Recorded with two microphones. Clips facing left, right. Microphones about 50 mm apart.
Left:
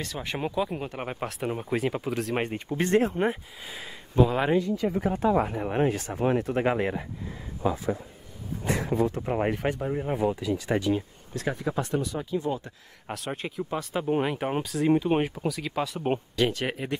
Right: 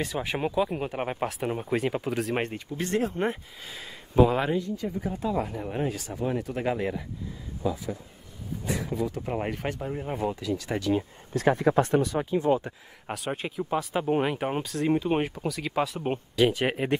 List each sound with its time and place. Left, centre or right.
0.0 s speech: centre
2.5 s speech: left
3.2 s speech: centre
4.1 s speech: centre
4.6 s speech: left
5.2 s speech: left
9.2 s speech: centre
10.3 s speech: centre
11.3 s speech: right
12.3 s speech: right
13.1 s speech: centre
16.5 s speech: right